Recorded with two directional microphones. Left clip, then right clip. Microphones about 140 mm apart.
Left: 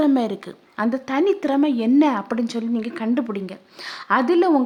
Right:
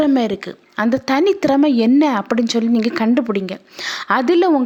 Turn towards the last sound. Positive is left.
turn(degrees=-25)  # may be behind; listen again after turning